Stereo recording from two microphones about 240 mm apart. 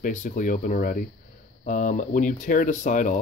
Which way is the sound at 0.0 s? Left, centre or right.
Left.